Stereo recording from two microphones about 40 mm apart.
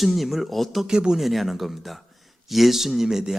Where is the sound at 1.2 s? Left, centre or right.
Centre.